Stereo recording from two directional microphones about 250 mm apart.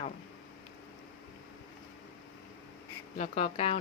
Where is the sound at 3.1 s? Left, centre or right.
Left.